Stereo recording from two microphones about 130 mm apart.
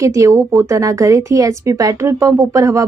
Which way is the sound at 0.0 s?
25° right (ahead or behind).